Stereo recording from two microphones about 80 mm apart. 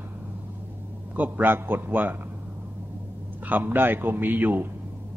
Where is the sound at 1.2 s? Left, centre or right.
Right.